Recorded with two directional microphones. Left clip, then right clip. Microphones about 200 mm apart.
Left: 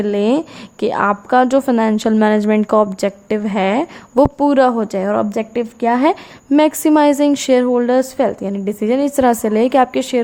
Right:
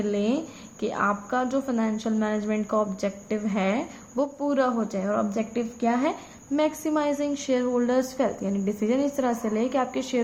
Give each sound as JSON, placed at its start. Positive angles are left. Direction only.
{"t": 0.0, "sound": "a woman's voice", "side_deg": 45}